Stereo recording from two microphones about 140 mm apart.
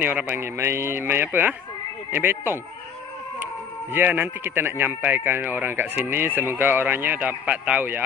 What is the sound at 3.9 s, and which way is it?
Speech, 15° right (ahead or behind).